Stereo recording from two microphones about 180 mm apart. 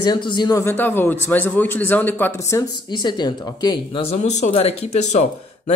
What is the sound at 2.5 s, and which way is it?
Speech, 25° left (ahead or behind).